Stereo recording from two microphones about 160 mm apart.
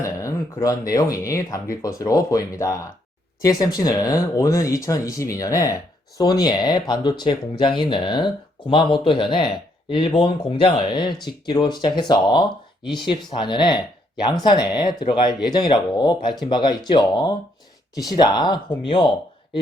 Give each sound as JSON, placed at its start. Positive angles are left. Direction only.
{"t": 0.0, "sound": "a man's voice", "side_deg": 20}